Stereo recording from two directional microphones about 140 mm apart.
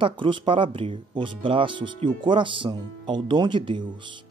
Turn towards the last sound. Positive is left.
turn(degrees=-35)  # may be behind; listen again after turning